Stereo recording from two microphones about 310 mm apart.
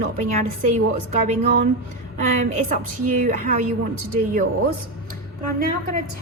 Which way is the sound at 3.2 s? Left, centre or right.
Right.